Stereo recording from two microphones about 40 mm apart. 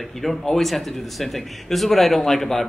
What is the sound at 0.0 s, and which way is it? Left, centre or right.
Speech, centre.